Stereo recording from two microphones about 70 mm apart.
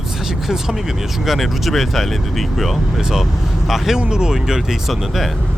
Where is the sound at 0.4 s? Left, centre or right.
Centre.